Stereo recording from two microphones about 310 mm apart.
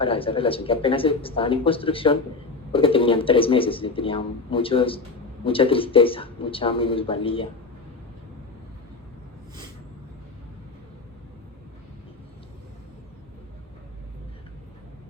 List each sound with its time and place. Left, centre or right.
0.0 s a man's voice: centre